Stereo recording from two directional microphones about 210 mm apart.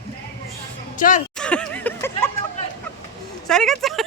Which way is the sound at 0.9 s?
40° left (ahead or behind).